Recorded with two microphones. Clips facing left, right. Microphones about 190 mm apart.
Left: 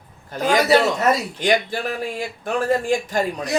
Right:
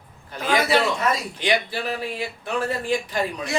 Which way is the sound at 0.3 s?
45° left (ahead or behind).